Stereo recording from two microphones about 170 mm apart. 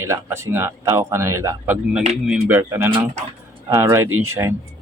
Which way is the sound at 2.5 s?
15° right (ahead or behind).